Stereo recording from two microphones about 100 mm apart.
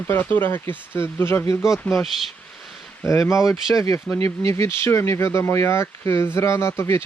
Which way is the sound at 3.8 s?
30° left (ahead or behind).